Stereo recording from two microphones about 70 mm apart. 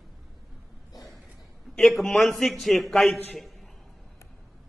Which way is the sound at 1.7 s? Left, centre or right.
Centre.